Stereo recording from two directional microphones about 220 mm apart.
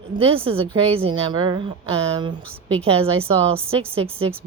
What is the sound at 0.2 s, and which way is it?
A woman's voice, 25° right (ahead or behind).